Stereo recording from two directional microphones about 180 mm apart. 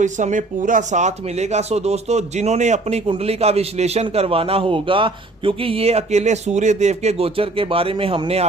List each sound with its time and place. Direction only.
0.0 s speech: 45° right (ahead or behind)